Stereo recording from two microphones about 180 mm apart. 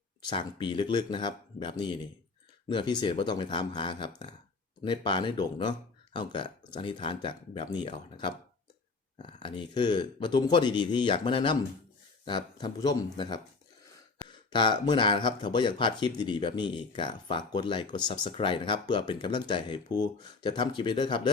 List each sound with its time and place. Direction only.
0.3 s speech: 25° left (ahead or behind)
14.5 s speech: 25° left (ahead or behind)